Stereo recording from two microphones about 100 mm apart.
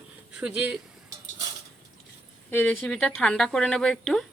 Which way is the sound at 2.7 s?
5° left (ahead or behind).